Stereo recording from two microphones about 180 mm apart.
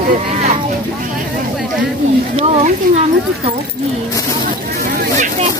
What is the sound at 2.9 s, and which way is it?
Speech, 50° right (ahead or behind).